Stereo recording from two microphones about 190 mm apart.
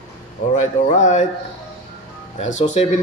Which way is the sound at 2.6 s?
35° left (ahead or behind).